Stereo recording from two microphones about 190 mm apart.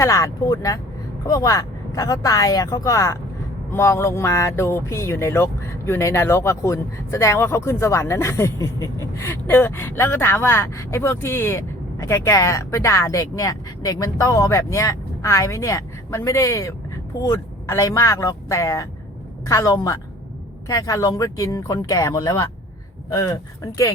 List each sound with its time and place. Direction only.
0.0 s speech: 15° left (ahead or behind)